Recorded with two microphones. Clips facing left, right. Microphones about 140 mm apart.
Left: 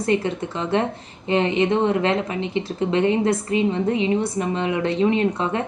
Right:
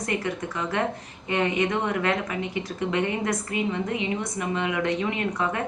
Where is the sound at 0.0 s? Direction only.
25° left (ahead or behind).